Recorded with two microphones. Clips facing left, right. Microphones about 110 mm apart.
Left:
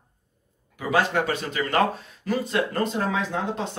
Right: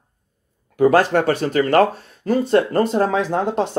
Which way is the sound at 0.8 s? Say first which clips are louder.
Right 9 dB; 50° right (ahead or behind).